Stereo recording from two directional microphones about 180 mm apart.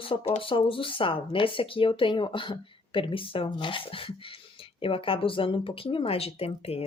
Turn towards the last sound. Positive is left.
turn(degrees=35)  # may be behind; listen again after turning